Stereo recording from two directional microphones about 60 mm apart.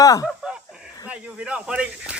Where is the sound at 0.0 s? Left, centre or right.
Left.